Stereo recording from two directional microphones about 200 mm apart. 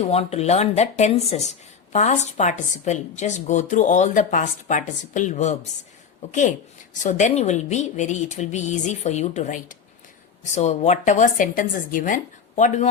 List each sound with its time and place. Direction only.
0.0 s speech: 30° left (ahead or behind)
6.9 s speech: 40° left (ahead or behind)